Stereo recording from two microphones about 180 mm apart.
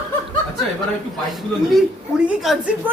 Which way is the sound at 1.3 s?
5° right (ahead or behind).